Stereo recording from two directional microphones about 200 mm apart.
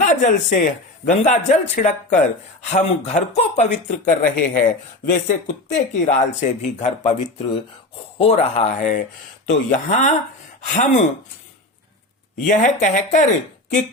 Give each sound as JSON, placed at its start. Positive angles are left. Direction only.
{"t": 0.0, "sound": "speech", "side_deg": 40}
{"t": 8.2, "sound": "speech", "side_deg": 30}
{"t": 12.4, "sound": "speech", "side_deg": 40}